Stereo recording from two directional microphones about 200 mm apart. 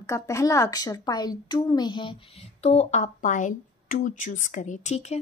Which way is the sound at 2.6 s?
30° left (ahead or behind).